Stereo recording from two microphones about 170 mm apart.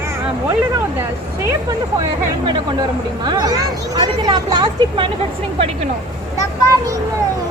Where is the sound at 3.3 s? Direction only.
25° right (ahead or behind).